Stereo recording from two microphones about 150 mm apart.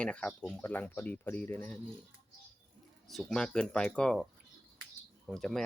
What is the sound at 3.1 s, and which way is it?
Speech, centre (ahead or behind).